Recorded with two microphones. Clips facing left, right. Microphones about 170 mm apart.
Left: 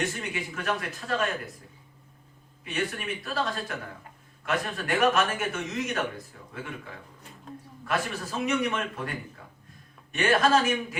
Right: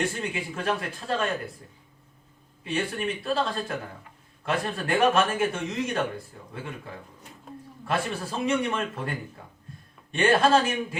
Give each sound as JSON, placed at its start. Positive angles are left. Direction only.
{"t": 0.0, "sound": "a man's voice", "side_deg": -30}
{"t": 2.6, "sound": "a man's voice", "side_deg": -30}
{"t": 7.9, "sound": "a man's voice", "side_deg": -30}